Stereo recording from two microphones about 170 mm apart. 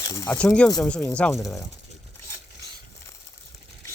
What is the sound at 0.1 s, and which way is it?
Speech, 20° left (ahead or behind).